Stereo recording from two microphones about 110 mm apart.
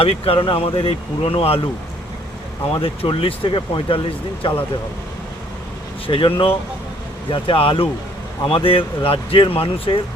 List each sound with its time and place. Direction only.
0.0 s speech: 60° left (ahead or behind)
2.8 s speech: 60° left (ahead or behind)
6.1 s speech: 50° left (ahead or behind)